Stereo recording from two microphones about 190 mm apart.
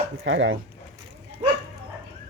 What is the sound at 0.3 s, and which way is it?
Speech, 80° right.